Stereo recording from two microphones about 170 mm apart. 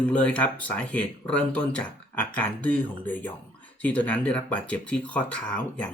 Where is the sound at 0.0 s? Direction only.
5° left (ahead or behind).